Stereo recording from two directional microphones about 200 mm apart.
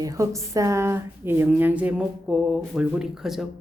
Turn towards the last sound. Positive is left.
turn(degrees=0)  # may be behind; listen again after turning